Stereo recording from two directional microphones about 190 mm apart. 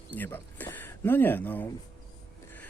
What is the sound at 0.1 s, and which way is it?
Speech, 10° left (ahead or behind).